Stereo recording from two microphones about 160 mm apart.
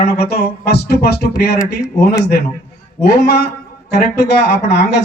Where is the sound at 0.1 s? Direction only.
80° left.